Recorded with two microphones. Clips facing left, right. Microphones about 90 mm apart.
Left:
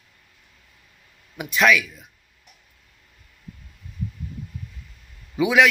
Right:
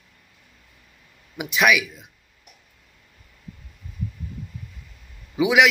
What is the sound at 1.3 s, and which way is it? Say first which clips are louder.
Speech: left 1 dB; 15° right (ahead or behind).